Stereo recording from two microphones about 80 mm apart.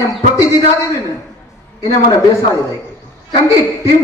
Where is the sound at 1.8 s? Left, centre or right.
Left.